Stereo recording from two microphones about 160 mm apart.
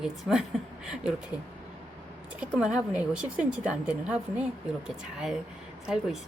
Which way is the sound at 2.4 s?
5° right (ahead or behind).